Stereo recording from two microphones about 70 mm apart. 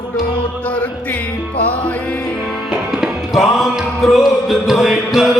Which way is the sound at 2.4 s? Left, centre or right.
Centre.